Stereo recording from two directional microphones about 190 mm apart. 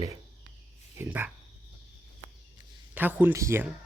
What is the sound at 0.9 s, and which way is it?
Speech, 10° right (ahead or behind).